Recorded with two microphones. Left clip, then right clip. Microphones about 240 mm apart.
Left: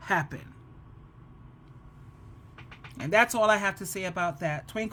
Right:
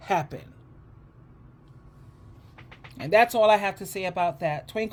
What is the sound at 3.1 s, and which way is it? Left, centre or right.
Speech, centre.